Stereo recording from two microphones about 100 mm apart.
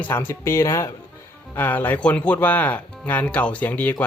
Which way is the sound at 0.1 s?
25° left (ahead or behind).